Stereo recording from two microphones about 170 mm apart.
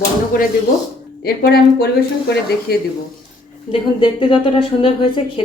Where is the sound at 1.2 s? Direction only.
65° left (ahead or behind).